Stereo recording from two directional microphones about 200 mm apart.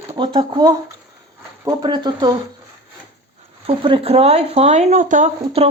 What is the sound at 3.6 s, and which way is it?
Speech, 25° right (ahead or behind).